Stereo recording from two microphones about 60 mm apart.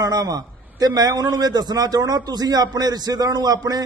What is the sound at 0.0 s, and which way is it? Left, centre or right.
A man's voice, right.